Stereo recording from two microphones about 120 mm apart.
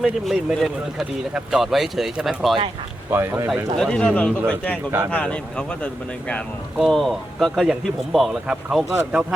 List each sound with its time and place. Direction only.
0.0 s speech: centre (ahead or behind)
3.1 s speech: 20° right (ahead or behind)
3.8 s speech: 5° left (ahead or behind)